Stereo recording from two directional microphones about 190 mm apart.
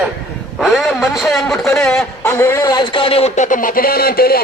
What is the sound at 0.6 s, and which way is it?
A man's voice, centre (ahead or behind).